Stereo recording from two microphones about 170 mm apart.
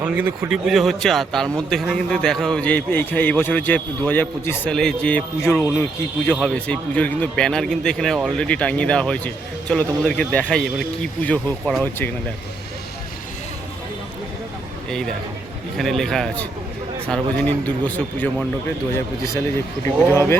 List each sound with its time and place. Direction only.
0.0 s speech: 10° right (ahead or behind); by 12.1 s 10° left (ahead or behind)
14.8 s speech: 5° left (ahead or behind)
20.1 s speech: 15° left (ahead or behind)